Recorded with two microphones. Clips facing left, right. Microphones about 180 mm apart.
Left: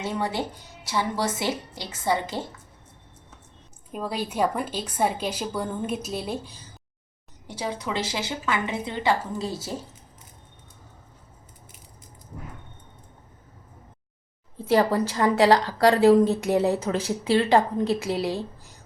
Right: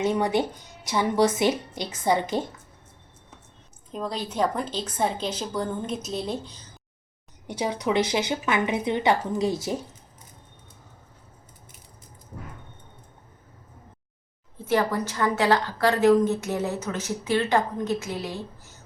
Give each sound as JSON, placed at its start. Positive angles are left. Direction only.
{"t": 0.0, "sound": "speech", "side_deg": -20}
{"t": 3.9, "sound": "a woman's voice", "side_deg": 10}
{"t": 7.4, "sound": "a woman's voice", "side_deg": -20}
{"t": 14.7, "sound": "a woman's voice", "side_deg": 35}